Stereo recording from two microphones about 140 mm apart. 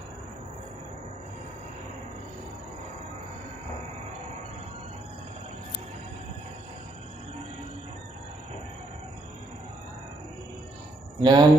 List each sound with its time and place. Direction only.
11.2 s speech: 30° right (ahead or behind)